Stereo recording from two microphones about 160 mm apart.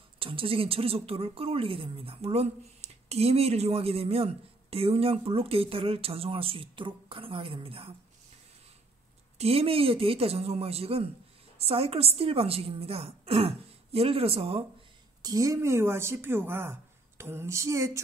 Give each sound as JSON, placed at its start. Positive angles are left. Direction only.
{"t": 0.2, "sound": "a woman's voice", "side_deg": -35}
{"t": 9.4, "sound": "a woman's voice", "side_deg": -40}
{"t": 15.2, "sound": "speech", "side_deg": -20}
{"t": 17.2, "sound": "a sound", "side_deg": -15}